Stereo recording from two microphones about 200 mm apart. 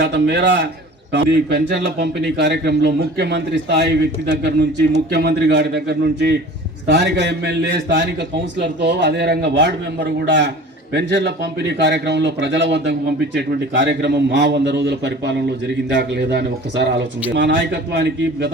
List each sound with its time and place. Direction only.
0.0 s speech: 60° right (ahead or behind)